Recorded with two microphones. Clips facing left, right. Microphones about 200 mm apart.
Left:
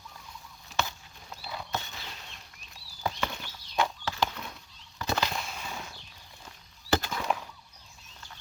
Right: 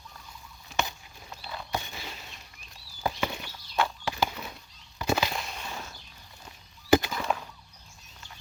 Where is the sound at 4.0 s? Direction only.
10° right (ahead or behind).